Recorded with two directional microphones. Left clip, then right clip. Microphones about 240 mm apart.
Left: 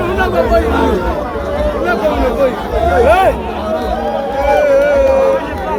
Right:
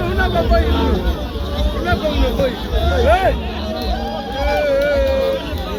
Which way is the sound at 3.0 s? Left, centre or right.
Left.